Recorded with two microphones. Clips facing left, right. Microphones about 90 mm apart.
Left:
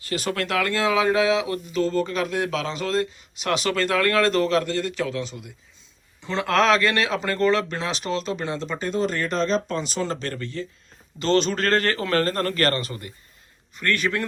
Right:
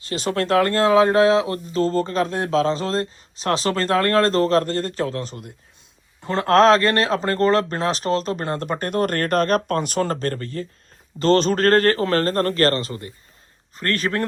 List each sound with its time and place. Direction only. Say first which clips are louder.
0.1 s speech: right 5 dB; 25° right (ahead or behind)